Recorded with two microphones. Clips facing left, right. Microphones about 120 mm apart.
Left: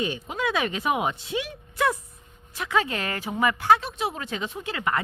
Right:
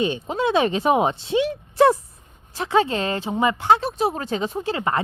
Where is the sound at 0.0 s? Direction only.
25° right (ahead or behind).